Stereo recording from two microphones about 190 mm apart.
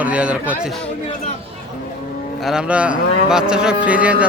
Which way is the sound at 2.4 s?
Centre (ahead or behind).